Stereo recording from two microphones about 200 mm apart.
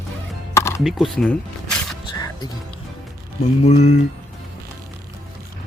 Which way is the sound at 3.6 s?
35° left (ahead or behind).